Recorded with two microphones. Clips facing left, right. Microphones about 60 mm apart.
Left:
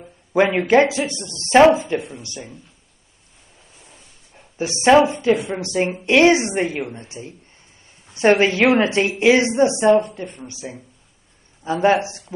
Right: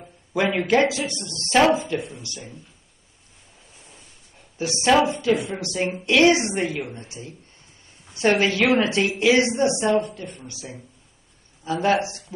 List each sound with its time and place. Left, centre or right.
0.3 s speech: left
4.6 s speech: left